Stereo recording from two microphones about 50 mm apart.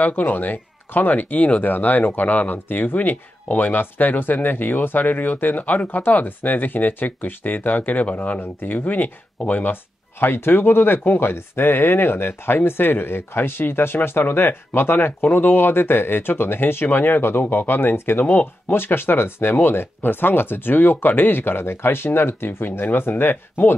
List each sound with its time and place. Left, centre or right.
0.0 s speech: left